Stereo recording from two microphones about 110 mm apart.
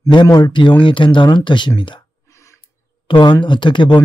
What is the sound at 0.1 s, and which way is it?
Speech, 40° left (ahead or behind).